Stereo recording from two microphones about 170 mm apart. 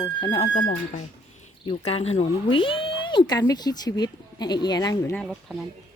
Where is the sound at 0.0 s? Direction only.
25° left (ahead or behind).